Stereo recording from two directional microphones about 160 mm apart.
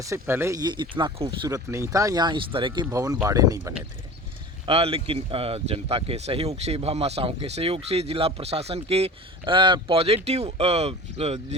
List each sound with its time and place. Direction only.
0.0 s speech: 15° right (ahead or behind); by 2.8 s 30° right (ahead or behind)
2.9 s speech: 20° right (ahead or behind)
4.6 s speech: 35° right (ahead or behind)